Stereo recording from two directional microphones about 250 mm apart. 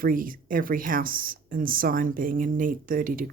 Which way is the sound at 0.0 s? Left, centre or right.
Right.